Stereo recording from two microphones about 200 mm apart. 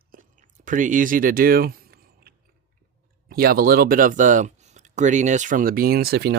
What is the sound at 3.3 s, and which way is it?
Speech, 50° right (ahead or behind).